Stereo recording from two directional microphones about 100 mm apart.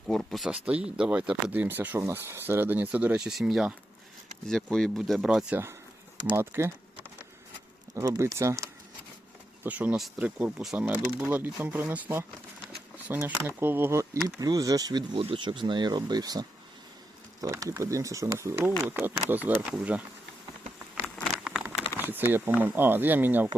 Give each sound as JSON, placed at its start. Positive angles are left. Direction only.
{"t": 0.1, "sound": "speech", "side_deg": 5}
{"t": 0.4, "sound": "speech", "side_deg": -10}
{"t": 3.2, "sound": "speech", "side_deg": -5}
{"t": 4.4, "sound": "speech", "side_deg": 5}
{"t": 6.3, "sound": "speech", "side_deg": -25}
{"t": 8.0, "sound": "speech", "side_deg": -30}
{"t": 9.6, "sound": "speech", "side_deg": -15}
{"t": 10.8, "sound": "speech", "side_deg": -15}
{"t": 14.3, "sound": "speech", "side_deg": -40}
{"t": 15.1, "sound": "speech", "side_deg": -65}
{"t": 21.4, "sound": "patter", "side_deg": -10}
{"t": 21.9, "sound": "speech", "side_deg": -20}